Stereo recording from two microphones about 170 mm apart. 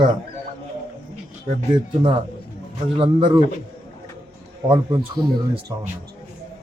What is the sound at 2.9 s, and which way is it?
Speech, 30° right (ahead or behind).